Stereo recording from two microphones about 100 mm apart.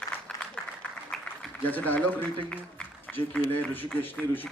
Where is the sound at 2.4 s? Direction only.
15° left (ahead or behind).